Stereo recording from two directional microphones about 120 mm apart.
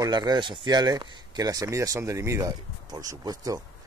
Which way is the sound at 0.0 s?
35° right (ahead or behind).